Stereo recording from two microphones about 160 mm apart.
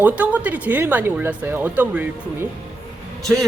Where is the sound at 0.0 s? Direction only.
10° right (ahead or behind).